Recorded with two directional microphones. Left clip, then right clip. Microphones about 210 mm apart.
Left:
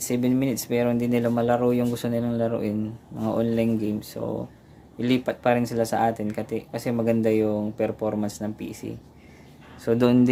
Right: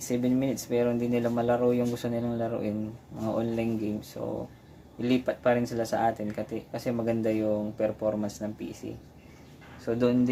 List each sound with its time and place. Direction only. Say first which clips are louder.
0.1 s speech: left 3 dB; 40° left (ahead or behind)
9.8 s speech: left 5 dB; 45° left (ahead or behind)